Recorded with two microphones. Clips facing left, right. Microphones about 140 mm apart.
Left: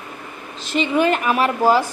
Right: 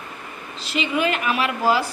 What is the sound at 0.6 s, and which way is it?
A woman's voice, 45° left (ahead or behind).